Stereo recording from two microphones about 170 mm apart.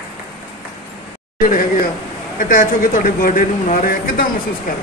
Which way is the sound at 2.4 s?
50° left (ahead or behind).